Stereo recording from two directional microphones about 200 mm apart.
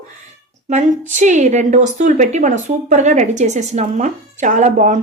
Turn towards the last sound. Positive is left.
turn(degrees=-40)  # may be behind; listen again after turning